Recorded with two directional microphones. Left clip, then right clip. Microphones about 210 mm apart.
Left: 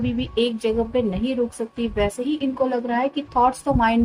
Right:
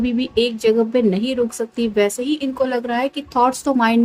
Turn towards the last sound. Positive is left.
turn(degrees=-30)  # may be behind; listen again after turning